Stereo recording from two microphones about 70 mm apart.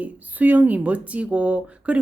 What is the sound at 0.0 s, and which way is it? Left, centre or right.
Speech, right.